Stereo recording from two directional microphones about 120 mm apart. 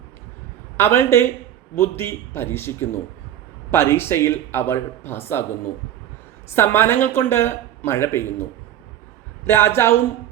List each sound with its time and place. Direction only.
0.8 s speech: 20° left (ahead or behind)
6.5 s speech: 20° left (ahead or behind)
9.5 s speech: 20° left (ahead or behind)